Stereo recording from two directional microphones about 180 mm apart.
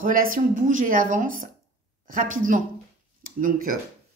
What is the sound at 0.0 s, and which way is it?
Speech, 50° right (ahead or behind).